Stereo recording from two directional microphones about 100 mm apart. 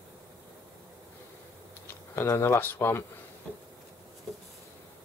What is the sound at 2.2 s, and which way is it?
Speech, 30° left (ahead or behind).